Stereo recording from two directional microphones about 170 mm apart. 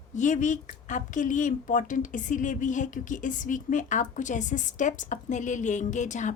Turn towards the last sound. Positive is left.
turn(degrees=45)  # may be behind; listen again after turning